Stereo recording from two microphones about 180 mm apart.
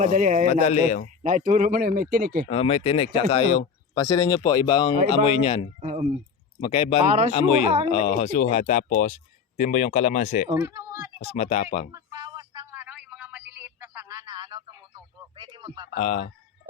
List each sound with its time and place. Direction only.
0.0 s a man's voice: 45° right (ahead or behind)
0.6 s speech: 40° left (ahead or behind)
1.2 s a man's voice: 45° right (ahead or behind)
2.5 s speech: 30° left (ahead or behind)
5.8 s speech: 40° right (ahead or behind)
6.6 s speech: 35° left (ahead or behind)
10.5 s speech: 15° right (ahead or behind)
11.3 s speech: 40° left (ahead or behind)
11.9 s a sound: 20° right (ahead or behind)
12.8 s a sound: 5° right (ahead or behind); by 15.9 s 25° right (ahead or behind)
16.0 s speech: 40° left (ahead or behind)